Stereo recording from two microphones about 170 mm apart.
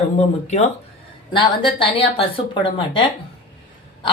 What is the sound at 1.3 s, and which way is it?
Speech, 30° left (ahead or behind).